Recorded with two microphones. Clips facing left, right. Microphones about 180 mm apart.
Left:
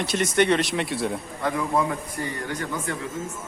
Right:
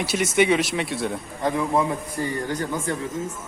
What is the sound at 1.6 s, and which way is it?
Speech, 20° right (ahead or behind).